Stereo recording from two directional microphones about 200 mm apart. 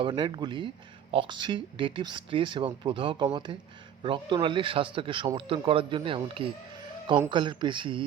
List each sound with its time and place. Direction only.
0.0 s speech: 25° right (ahead or behind)